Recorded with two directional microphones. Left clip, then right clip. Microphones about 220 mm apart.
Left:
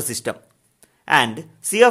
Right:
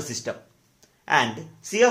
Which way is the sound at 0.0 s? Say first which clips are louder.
Left 4 dB; 55° left (ahead or behind).